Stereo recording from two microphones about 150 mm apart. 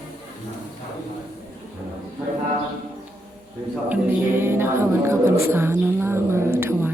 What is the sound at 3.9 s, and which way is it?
Speech, 15° right (ahead or behind).